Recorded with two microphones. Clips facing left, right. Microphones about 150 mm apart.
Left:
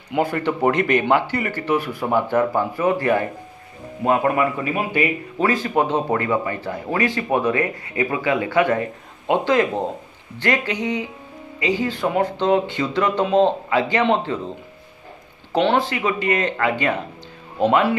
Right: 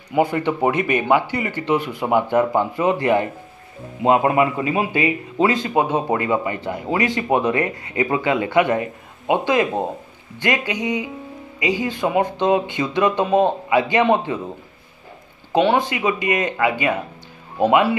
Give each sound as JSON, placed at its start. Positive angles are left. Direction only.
{"t": 0.1, "sound": "a man's voice", "side_deg": -15}
{"t": 15.5, "sound": "speech", "side_deg": -15}